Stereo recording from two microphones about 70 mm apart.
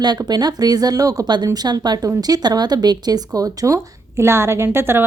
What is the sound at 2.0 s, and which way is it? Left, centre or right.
Speech, right.